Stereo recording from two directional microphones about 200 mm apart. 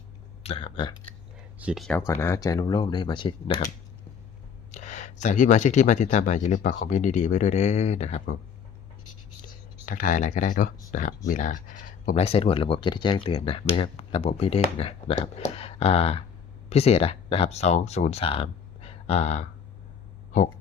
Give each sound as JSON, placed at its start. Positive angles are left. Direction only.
{"t": 0.4, "sound": "speech", "side_deg": 25}
{"t": 1.5, "sound": "speech", "side_deg": -5}
{"t": 2.0, "sound": "speech", "side_deg": 15}
{"t": 4.7, "sound": "speech", "side_deg": 35}
{"t": 9.8, "sound": "speech", "side_deg": 40}